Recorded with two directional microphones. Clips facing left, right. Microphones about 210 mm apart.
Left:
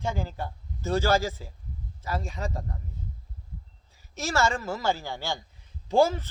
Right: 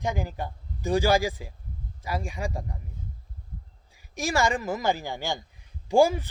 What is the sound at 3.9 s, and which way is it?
Speech, 15° right (ahead or behind).